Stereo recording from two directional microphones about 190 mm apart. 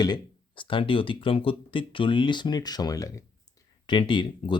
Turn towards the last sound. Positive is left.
turn(degrees=25)  # may be behind; listen again after turning